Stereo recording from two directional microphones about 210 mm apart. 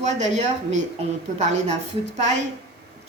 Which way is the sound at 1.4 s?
30° right (ahead or behind).